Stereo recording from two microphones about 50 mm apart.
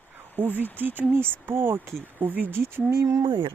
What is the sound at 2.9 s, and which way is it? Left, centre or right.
Speech, right.